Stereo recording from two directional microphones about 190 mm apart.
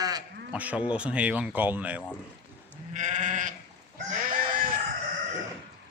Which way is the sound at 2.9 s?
40° right (ahead or behind).